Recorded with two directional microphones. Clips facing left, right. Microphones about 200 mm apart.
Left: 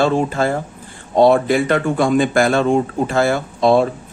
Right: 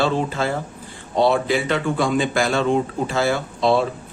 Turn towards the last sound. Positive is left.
turn(degrees=50)  # may be behind; listen again after turning